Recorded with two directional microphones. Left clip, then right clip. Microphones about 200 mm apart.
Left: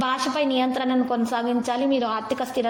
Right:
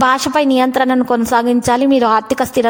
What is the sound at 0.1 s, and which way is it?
A woman's voice, 40° right (ahead or behind).